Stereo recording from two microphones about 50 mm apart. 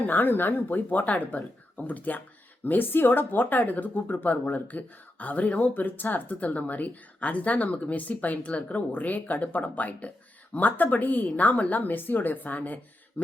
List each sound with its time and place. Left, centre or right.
0.0 s speech: left